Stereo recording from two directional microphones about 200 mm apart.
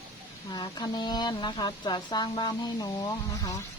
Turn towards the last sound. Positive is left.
turn(degrees=15)  # may be behind; listen again after turning